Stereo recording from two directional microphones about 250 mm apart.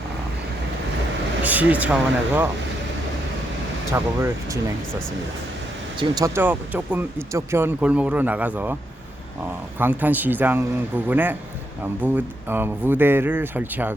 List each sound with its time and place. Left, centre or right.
1.5 s speech: centre
3.9 s speech: centre
6.0 s speech: centre